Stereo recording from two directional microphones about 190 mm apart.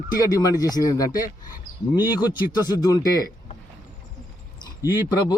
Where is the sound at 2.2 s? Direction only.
20° left (ahead or behind).